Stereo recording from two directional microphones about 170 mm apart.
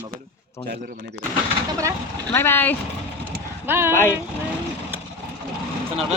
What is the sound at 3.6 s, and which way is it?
Speech, 15° right (ahead or behind).